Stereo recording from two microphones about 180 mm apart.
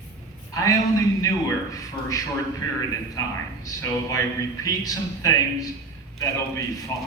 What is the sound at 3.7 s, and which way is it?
Speech, 20° left (ahead or behind).